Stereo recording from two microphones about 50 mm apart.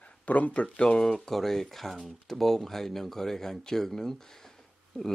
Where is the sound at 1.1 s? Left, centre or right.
Centre.